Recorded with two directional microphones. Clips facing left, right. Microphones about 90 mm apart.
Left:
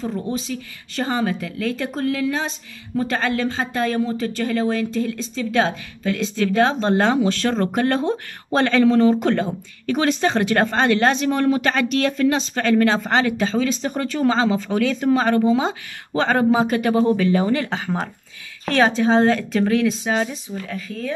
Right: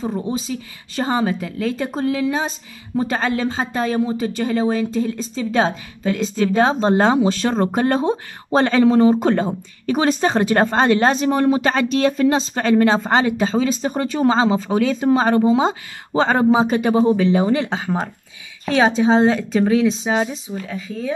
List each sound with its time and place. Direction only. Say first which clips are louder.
0.0 s speech: right 2 dB; 20° right (ahead or behind)
19.0 s speech: right 1 dB; 20° right (ahead or behind)